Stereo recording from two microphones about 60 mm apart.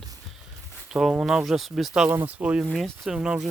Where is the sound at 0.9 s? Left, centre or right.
Centre.